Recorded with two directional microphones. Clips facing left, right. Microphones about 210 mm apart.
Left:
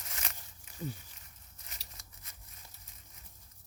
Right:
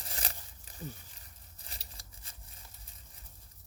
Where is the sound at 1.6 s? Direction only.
30° right (ahead or behind).